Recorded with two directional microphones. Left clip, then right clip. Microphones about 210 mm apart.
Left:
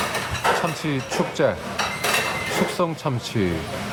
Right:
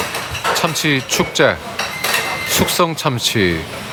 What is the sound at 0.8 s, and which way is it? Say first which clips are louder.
Speech: right 8 dB; 10° right (ahead or behind).